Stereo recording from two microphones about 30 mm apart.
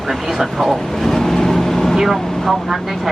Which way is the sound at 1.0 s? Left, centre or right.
Centre.